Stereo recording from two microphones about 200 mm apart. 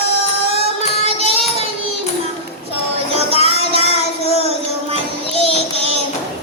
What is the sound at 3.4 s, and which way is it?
Child singing, 30° right (ahead or behind).